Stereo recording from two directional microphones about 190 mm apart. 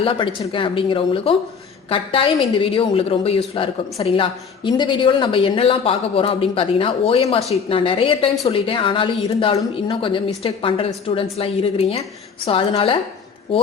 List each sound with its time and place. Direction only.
0.0 s a woman's voice: 25° left (ahead or behind)